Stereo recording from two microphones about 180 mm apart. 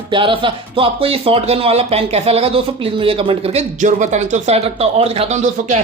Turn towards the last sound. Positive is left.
turn(degrees=-40)  # may be behind; listen again after turning